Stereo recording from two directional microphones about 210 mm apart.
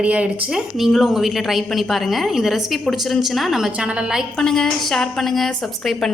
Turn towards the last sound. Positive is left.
turn(degrees=0)  # may be behind; listen again after turning